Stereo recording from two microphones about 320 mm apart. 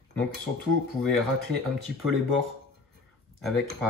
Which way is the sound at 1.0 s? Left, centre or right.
Centre.